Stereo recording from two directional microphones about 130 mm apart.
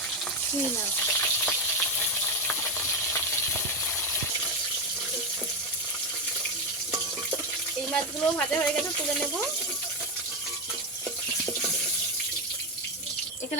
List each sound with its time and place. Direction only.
1.0 s frying: 15° left (ahead or behind)
7.9 s speech: 10° left (ahead or behind)